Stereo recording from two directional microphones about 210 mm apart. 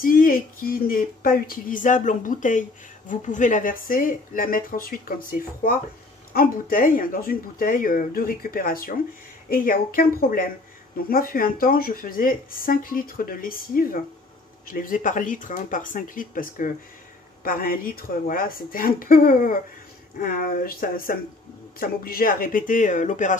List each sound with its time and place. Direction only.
0.0 s speech: 40° left (ahead or behind)